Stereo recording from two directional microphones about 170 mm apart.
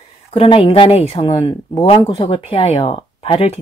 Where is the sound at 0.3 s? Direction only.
35° left (ahead or behind).